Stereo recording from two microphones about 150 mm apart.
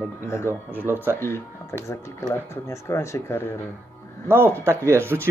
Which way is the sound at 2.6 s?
20° left (ahead or behind).